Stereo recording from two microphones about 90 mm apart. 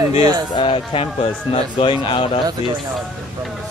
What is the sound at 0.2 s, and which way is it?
Speech, 50° right (ahead or behind).